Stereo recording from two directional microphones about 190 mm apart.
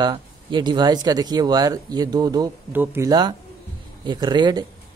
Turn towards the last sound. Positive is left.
turn(degrees=-20)  # may be behind; listen again after turning